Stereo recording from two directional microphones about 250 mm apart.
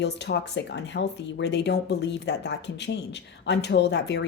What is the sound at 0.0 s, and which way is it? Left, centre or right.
Speech, left.